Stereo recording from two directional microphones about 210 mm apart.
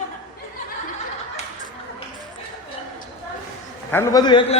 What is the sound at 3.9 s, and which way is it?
Speech, 15° left (ahead or behind).